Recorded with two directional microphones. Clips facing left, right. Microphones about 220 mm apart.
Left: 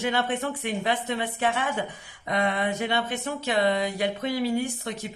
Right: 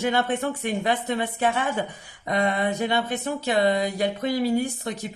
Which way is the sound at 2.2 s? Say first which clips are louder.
Right 2 dB; 40° right (ahead or behind).